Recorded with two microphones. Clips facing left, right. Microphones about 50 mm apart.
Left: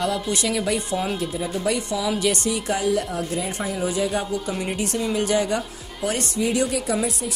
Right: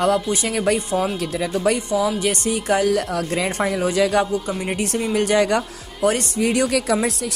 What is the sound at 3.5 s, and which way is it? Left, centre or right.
Speech, right.